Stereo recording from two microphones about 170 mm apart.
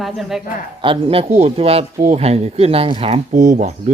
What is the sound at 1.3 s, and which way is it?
Speech, 40° right (ahead or behind).